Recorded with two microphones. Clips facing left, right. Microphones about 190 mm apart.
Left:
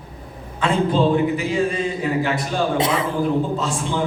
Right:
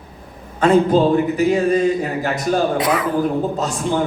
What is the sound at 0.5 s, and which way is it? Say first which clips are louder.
A man's voice: right 5 dB; 40° right (ahead or behind).